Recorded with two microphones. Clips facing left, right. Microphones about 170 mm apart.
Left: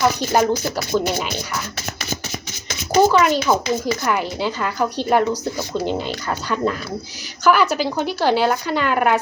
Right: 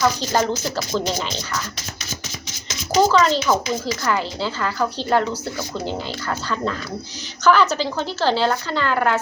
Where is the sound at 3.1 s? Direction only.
15° left (ahead or behind).